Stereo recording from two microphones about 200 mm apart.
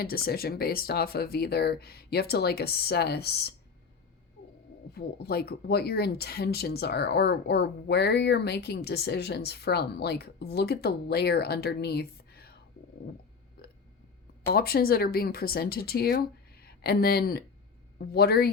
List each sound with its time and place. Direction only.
0.0 s speech: 50° left (ahead or behind)
4.9 s speech: 50° left (ahead or behind)
14.4 s speech: 50° left (ahead or behind)